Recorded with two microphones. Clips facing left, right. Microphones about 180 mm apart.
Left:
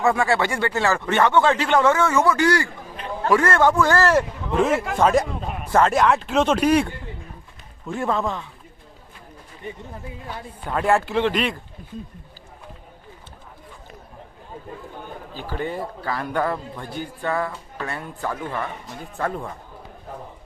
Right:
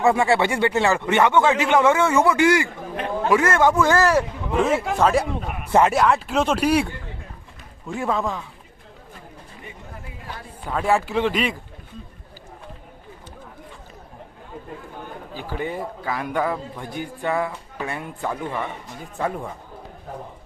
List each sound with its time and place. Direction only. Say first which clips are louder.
0.0 s a man's voice: right 2 dB; 20° right (ahead or behind)
4.1 s speech: even; 5° right (ahead or behind)
10.7 s speech: left 1 dB; centre (ahead or behind)
15.4 s a man's voice: even; 15° right (ahead or behind)